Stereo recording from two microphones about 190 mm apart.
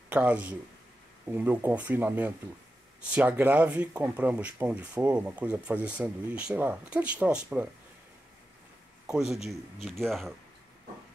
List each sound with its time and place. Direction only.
0.1 s speech: 5° right (ahead or behind)
9.0 s speech: 5° right (ahead or behind)